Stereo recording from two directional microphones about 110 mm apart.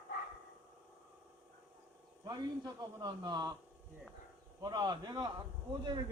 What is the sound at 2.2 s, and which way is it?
Speech, 40° right (ahead or behind).